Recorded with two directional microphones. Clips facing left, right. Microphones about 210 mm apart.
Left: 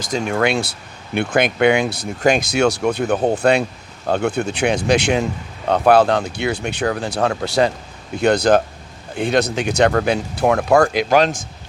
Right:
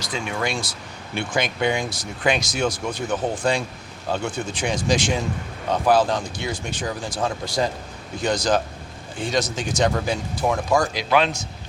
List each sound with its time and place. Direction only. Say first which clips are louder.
0.0 s speech: left 7 dB; 45° left (ahead or behind)
0.3 s speech: left 9 dB; 65° left (ahead or behind)
2.2 s speech: left 6 dB; 45° left (ahead or behind)
2.5 s speech: left 8 dB; 70° left (ahead or behind)
8.2 s speech: left 7 dB; 60° left (ahead or behind)